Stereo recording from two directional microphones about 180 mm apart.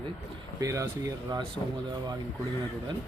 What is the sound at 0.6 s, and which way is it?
Speech, 15° right (ahead or behind).